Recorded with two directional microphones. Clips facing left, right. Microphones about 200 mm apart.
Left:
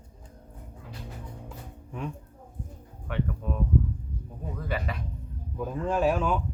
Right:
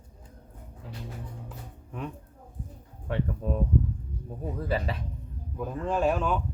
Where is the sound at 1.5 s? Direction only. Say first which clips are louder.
Left 1 dB; centre (ahead or behind).